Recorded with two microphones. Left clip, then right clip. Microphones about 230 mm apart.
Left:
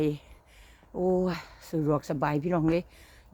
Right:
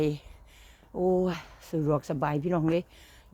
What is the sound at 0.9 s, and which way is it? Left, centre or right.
Speech, centre.